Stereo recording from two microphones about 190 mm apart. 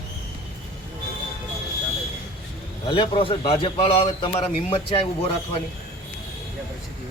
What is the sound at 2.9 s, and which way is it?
A man's voice, 25° left (ahead or behind).